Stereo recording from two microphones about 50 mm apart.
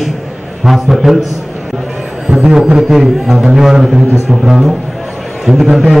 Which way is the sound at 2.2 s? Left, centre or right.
Centre.